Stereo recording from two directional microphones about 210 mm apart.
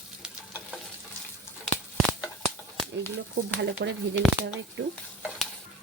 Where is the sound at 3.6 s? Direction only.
55° right (ahead or behind).